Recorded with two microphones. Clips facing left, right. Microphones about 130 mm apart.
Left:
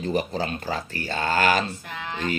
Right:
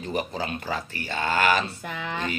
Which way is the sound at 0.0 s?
35° left (ahead or behind).